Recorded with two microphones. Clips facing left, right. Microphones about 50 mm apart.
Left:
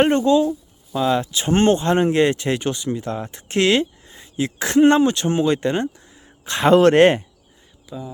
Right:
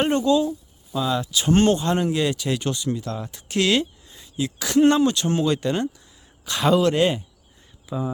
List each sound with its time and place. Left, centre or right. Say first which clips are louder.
0.0 s speech: left 4 dB; left
6.7 s speech: left 9 dB; left
7.9 s speech: right 4 dB; centre